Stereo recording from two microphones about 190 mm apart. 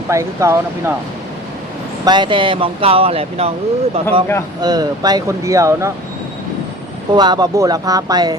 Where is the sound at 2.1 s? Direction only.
25° right (ahead or behind).